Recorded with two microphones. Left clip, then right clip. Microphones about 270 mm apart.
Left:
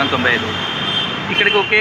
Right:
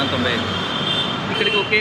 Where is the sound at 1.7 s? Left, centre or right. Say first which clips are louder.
Left 3 dB; centre.